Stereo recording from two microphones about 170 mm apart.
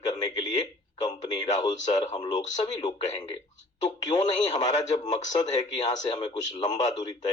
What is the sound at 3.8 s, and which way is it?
Speech, 25° left (ahead or behind).